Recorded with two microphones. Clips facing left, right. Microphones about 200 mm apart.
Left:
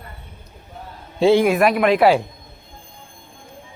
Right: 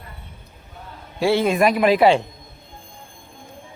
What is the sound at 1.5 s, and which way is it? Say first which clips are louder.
Speech: even; centre (ahead or behind).